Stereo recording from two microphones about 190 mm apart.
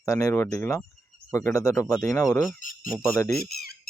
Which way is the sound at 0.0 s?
15° left (ahead or behind).